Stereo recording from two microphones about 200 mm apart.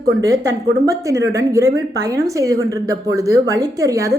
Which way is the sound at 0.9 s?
15° right (ahead or behind).